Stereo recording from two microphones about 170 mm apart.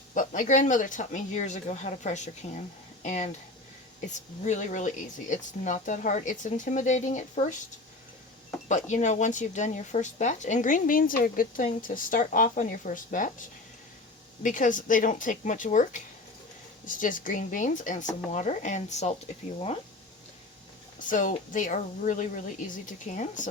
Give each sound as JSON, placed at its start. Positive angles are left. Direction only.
{"t": 0.1, "sound": "speech", "side_deg": 50}
{"t": 8.6, "sound": "speech", "side_deg": 45}
{"t": 14.4, "sound": "speech", "side_deg": 50}
{"t": 21.1, "sound": "speech", "side_deg": 50}